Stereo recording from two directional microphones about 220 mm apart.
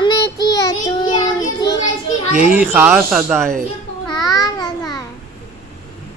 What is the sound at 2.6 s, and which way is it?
Speech, 10° right (ahead or behind).